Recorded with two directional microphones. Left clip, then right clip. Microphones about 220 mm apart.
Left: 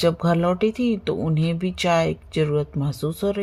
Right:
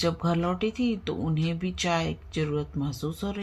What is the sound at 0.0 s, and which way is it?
Speech, 45° left (ahead or behind).